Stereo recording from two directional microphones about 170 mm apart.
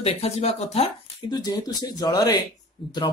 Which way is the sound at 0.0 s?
40° left (ahead or behind).